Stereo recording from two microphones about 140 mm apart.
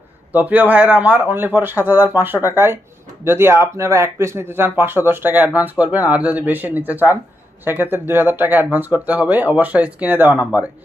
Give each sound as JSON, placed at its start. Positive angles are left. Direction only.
{"t": 0.3, "sound": "speech", "side_deg": -10}